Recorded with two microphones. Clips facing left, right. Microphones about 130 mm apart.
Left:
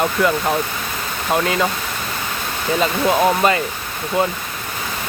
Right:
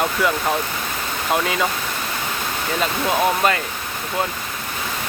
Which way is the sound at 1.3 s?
Centre (ahead or behind).